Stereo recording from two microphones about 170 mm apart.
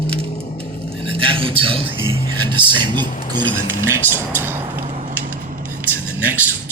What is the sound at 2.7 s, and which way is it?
Speech, 25° right (ahead or behind).